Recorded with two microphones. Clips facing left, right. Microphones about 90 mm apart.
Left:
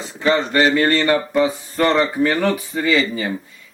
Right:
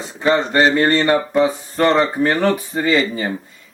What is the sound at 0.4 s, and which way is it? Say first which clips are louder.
Speech: right 1 dB; 30° right (ahead or behind).